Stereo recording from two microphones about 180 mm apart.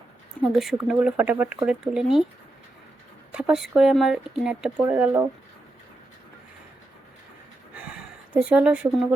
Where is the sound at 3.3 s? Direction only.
5° right (ahead or behind).